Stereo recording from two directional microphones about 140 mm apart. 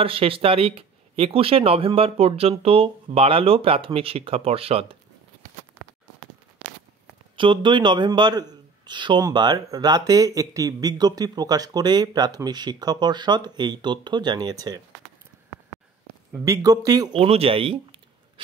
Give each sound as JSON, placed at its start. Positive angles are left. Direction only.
{"t": 0.0, "sound": "speech", "side_deg": -40}
{"t": 7.3, "sound": "speech", "side_deg": -35}
{"t": 16.4, "sound": "speech", "side_deg": -25}
{"t": 17.2, "sound": "speech", "side_deg": -45}